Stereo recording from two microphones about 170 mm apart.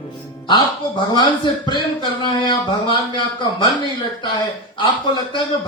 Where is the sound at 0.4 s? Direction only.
25° left (ahead or behind).